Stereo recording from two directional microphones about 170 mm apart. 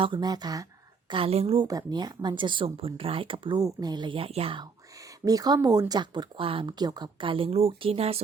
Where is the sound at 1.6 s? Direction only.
20° right (ahead or behind).